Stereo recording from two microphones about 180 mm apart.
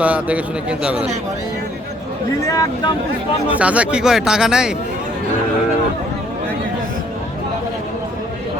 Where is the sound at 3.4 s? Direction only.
10° right (ahead or behind).